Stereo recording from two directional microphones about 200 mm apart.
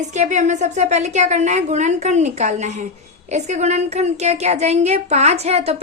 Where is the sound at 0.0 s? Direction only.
35° right (ahead or behind).